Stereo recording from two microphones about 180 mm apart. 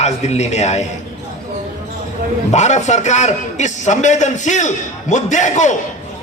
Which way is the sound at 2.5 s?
40° left (ahead or behind).